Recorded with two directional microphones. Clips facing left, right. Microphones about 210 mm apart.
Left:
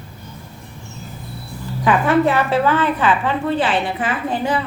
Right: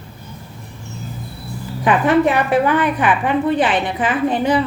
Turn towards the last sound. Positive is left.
turn(degrees=-20)  # may be behind; listen again after turning